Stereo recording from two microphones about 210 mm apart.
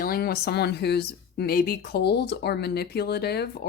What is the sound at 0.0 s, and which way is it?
Speech, 45° left (ahead or behind).